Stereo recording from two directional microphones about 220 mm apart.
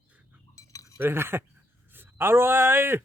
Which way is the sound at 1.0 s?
10° right (ahead or behind).